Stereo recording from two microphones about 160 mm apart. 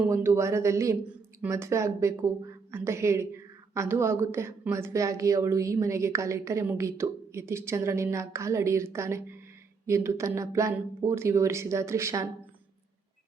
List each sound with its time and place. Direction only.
0.1 s a woman's voice: 15° right (ahead or behind)